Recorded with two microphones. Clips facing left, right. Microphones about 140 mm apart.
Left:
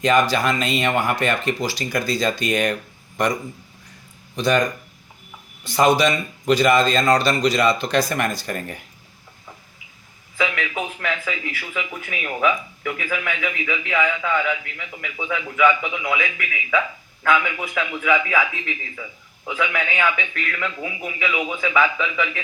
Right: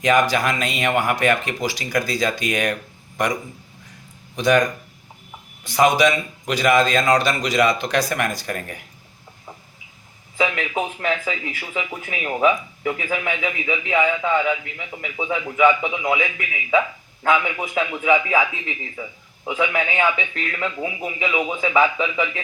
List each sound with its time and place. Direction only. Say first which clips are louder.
0.0 s speech: even; 15° right (ahead or behind)
4.4 s speech: right 2 dB; 10° right (ahead or behind)
5.6 s speech: even; 15° right (ahead or behind)
10.3 s speech: right 2 dB; 30° right (ahead or behind)